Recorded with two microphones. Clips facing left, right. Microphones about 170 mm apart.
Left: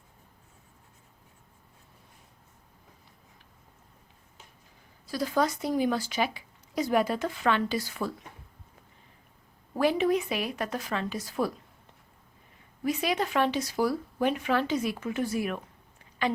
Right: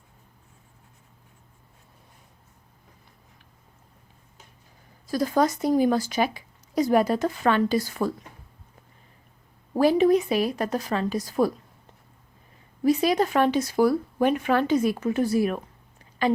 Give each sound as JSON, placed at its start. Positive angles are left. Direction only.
{"t": 5.0, "sound": "speech", "side_deg": -45}
{"t": 9.7, "sound": "a woman's voice", "side_deg": -40}
{"t": 12.8, "sound": "speech", "side_deg": -40}